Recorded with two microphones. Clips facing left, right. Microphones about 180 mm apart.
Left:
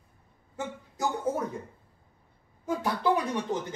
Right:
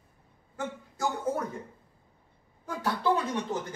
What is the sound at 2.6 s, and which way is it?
Speech, 20° left (ahead or behind).